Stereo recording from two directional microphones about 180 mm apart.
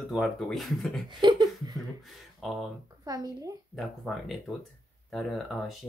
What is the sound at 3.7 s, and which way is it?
Speech, centre (ahead or behind).